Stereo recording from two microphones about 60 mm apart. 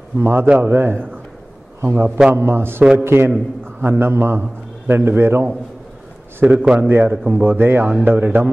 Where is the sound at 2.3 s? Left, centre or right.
Right.